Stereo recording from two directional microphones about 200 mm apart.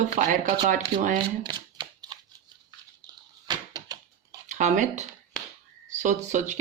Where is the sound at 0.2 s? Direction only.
40° right (ahead or behind).